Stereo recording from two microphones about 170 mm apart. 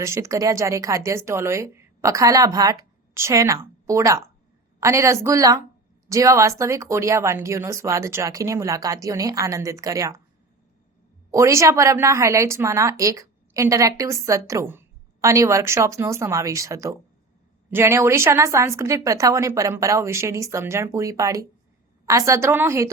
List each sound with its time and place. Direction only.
0.0 s a woman's voice: 15° right (ahead or behind)
11.3 s a woman's voice: 15° right (ahead or behind)